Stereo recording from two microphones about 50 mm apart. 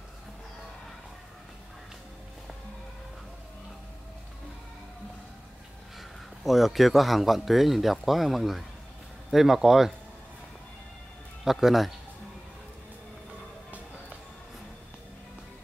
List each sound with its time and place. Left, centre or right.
5.9 s a man's voice: centre
11.5 s speech: centre